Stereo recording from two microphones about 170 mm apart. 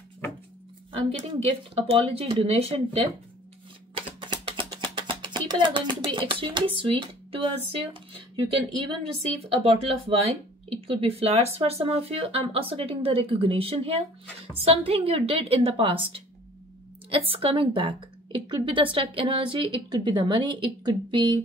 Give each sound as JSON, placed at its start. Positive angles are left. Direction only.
{"t": 0.9, "sound": "a woman's voice", "side_deg": -35}
{"t": 3.9, "sound": "a sound", "side_deg": -30}
{"t": 6.8, "sound": "a woman's voice", "side_deg": -30}